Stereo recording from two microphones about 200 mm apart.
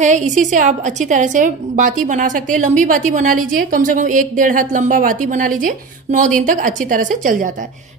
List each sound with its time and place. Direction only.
0.0 s a woman's voice: 40° right (ahead or behind)